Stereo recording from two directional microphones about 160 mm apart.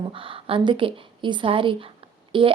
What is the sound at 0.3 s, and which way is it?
A woman's voice, 35° right (ahead or behind).